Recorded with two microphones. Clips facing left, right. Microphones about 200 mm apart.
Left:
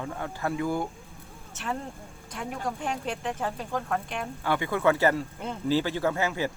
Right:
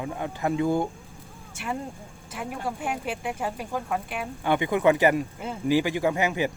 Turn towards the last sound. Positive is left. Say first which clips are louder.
# right 3 dB
turn(degrees=-15)  # may be behind; listen again after turning